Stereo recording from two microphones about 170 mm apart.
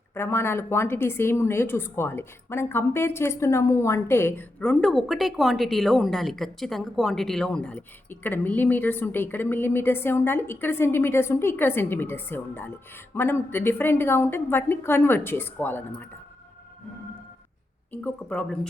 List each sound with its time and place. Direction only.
0.1 s a woman's voice: 15° left (ahead or behind)
17.9 s a woman's voice: 10° left (ahead or behind)